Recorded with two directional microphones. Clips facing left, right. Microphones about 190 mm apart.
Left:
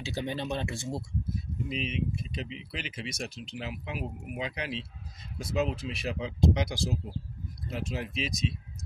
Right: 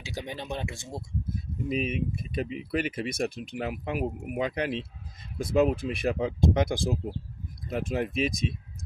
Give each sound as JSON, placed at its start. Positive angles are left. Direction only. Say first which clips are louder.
{"t": 0.0, "sound": "speech", "louder": "left 3 dB", "side_deg": -15}
{"t": 1.7, "sound": "speech", "louder": "right 5 dB", "side_deg": -50}